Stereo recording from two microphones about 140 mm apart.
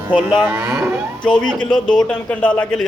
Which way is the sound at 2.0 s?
10° left (ahead or behind).